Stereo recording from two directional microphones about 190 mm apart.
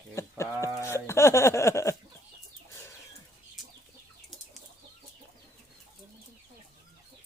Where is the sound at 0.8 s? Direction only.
15° left (ahead or behind).